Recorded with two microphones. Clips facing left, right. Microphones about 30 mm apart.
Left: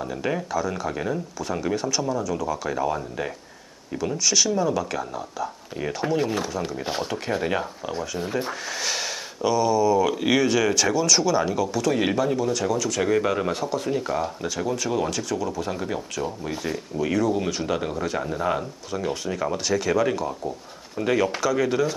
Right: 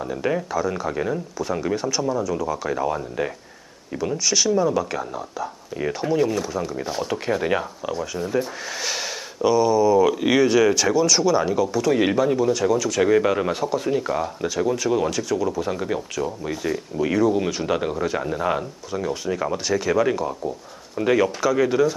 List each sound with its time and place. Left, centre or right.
0.0 s speech: centre
6.8 s speech: centre
7.1 s speech: centre
8.2 s speech: centre
8.8 s speech: centre